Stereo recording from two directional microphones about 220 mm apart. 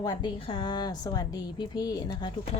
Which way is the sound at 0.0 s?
20° left (ahead or behind).